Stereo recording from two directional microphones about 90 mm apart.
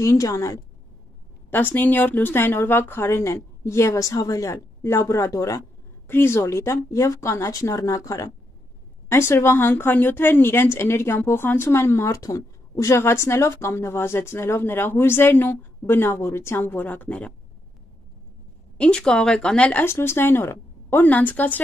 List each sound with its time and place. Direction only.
0.0 s speech: 35° left (ahead or behind)
1.5 s a woman's voice: 20° left (ahead or behind)
18.8 s speech: 10° left (ahead or behind)
19.8 s a woman's voice: 25° left (ahead or behind)